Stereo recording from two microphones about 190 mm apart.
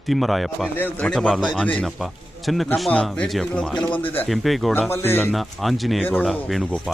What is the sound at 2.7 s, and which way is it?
Speech, centre (ahead or behind).